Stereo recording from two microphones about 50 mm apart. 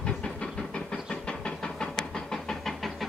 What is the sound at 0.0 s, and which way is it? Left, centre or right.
Steam, centre.